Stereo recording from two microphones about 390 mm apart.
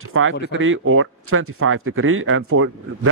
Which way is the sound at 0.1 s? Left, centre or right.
Right.